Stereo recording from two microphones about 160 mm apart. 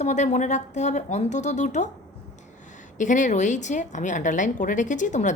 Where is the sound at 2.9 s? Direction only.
55° left (ahead or behind).